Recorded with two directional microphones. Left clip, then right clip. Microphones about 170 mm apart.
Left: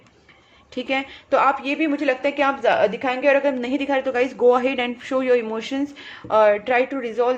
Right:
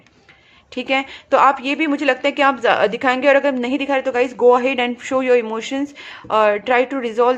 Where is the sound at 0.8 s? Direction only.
25° right (ahead or behind).